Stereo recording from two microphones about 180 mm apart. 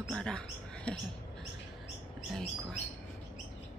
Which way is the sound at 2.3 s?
Centre (ahead or behind).